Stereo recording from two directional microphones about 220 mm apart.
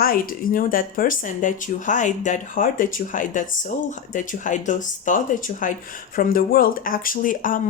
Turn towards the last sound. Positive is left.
turn(degrees=35)  # may be behind; listen again after turning